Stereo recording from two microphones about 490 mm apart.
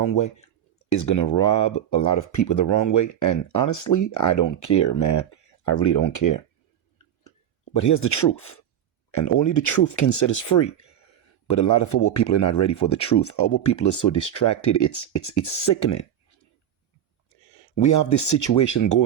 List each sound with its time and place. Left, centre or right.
0.9 s speech: left
7.8 s speech: left
17.5 s speech: left